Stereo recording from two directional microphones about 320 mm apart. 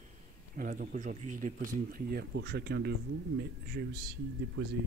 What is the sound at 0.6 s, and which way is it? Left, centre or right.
Speech, right.